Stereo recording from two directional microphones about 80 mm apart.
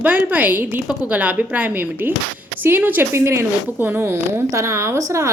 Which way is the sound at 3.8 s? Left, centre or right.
Right.